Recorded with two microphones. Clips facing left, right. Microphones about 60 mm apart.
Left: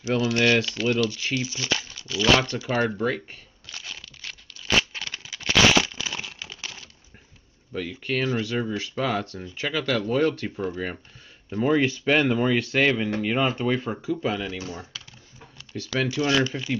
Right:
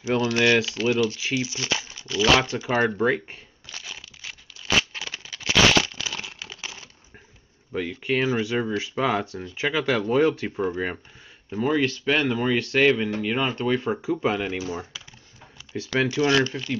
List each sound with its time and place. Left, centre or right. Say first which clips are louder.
0.0 s speech: right 1 dB; centre
2.6 s speech: right 2 dB; right
3.6 s crumpling: even; centre
5.3 s a sound: left 1 dB; centre
5.7 s crumpling: even; centre
6.2 s crumpling: even; centre
8.0 s speech: right 2 dB; centre
11.5 s speech: left 1 dB; centre
11.8 s speech: left 1 dB; centre
12.2 s speech: left 1 dB; centre
14.1 s speech: right 1 dB; right
16.1 s speech: right 1 dB; centre